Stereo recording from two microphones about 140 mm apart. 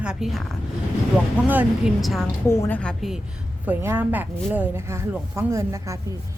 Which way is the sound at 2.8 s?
5° left (ahead or behind).